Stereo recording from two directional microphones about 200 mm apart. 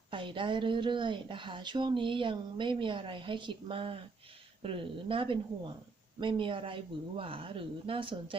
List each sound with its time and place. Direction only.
0.1 s speech: 25° right (ahead or behind)